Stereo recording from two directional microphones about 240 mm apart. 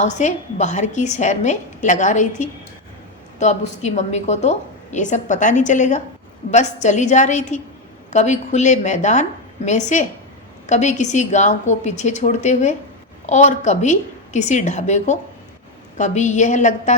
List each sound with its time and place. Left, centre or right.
0.0 s a woman's voice: left